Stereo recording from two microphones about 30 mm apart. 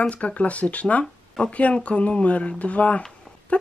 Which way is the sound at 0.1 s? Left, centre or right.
Left.